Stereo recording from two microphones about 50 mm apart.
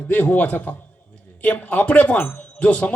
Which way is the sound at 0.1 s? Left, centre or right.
Left.